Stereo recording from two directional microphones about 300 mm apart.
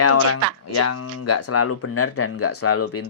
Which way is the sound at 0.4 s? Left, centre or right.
Right.